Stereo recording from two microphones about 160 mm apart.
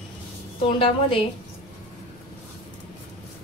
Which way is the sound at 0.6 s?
35° left (ahead or behind).